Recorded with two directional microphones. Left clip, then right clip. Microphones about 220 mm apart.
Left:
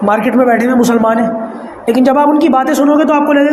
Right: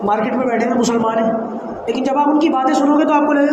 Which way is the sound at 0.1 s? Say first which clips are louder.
Left 8 dB; 50° left (ahead or behind).